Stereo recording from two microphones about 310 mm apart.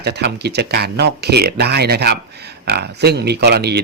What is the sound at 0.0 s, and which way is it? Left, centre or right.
Speech, right.